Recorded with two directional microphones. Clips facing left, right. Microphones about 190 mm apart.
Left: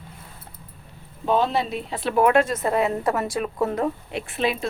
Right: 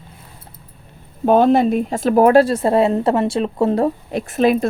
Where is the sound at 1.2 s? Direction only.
50° right (ahead or behind).